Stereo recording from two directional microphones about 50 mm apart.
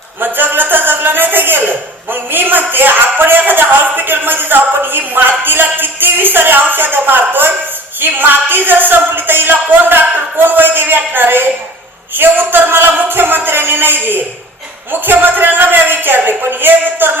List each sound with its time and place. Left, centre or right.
0.2 s a man's voice: right